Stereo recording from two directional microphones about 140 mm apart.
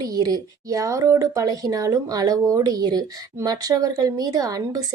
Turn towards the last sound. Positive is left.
turn(degrees=-25)  # may be behind; listen again after turning